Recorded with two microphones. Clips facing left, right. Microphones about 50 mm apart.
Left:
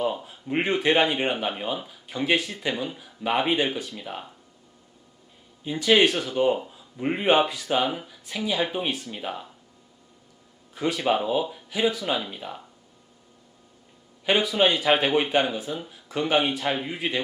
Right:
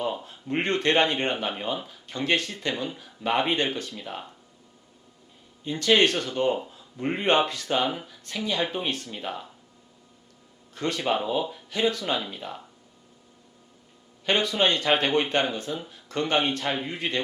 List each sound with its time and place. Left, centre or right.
0.0 s speech: centre
5.6 s speech: centre
10.8 s speech: centre
14.3 s speech: centre